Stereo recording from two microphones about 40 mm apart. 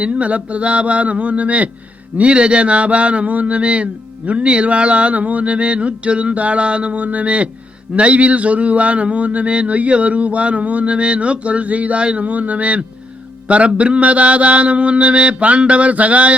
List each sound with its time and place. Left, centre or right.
0.0 s a man's voice: right